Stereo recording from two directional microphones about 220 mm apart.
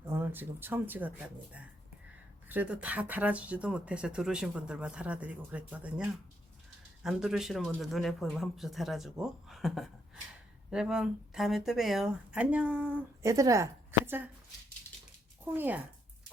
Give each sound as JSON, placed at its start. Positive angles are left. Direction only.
{"t": 0.1, "sound": "speech", "side_deg": -10}
{"t": 2.5, "sound": "speech", "side_deg": -5}
{"t": 15.4, "sound": "speech", "side_deg": -10}